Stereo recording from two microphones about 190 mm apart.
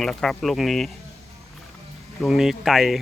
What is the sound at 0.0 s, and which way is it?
Speech, centre (ahead or behind).